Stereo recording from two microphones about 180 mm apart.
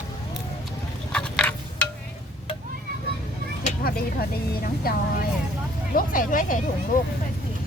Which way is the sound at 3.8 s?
55° left (ahead or behind).